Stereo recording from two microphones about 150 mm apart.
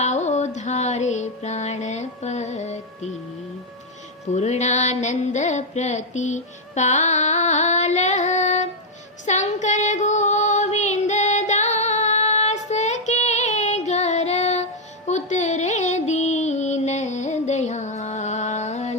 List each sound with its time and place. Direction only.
0.0 s music: 50° left (ahead or behind)
4.4 s a sound: 50° left (ahead or behind)
9.2 s female singing: 50° left (ahead or behind)